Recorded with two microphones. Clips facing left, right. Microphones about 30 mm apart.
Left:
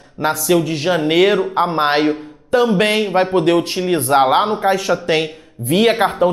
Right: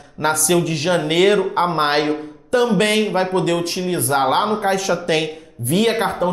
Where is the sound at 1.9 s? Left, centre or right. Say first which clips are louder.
Left 2 dB; centre.